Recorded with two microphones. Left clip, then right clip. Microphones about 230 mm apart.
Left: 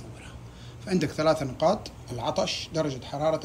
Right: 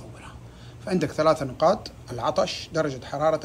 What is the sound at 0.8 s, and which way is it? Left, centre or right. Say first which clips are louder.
Speech: right 3 dB; centre.